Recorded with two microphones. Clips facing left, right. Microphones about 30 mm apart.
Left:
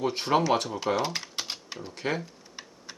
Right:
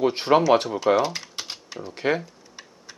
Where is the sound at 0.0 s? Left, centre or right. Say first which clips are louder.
Right 6 dB; centre.